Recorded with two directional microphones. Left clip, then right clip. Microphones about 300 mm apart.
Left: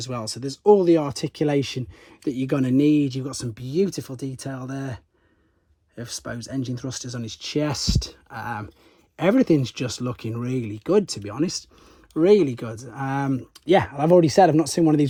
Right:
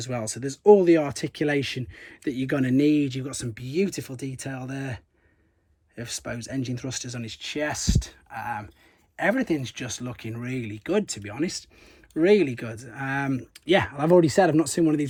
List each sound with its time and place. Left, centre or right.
0.0 s speech: centre
6.0 s speech: centre